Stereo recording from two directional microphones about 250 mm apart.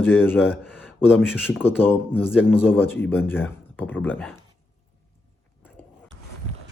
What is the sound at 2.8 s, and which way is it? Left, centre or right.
Speech, centre.